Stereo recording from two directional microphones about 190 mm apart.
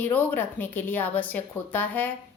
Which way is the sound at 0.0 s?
10° left (ahead or behind).